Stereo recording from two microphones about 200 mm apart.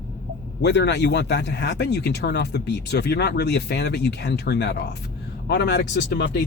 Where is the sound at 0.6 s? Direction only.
55° left (ahead or behind).